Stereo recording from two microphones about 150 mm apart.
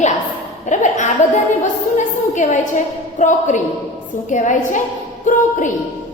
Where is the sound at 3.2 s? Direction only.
55° left (ahead or behind).